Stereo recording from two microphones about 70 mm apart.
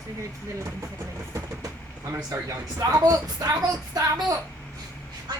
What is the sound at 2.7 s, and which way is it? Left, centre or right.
Speech, right.